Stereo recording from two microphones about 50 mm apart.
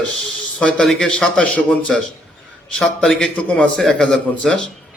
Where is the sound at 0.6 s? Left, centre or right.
Centre.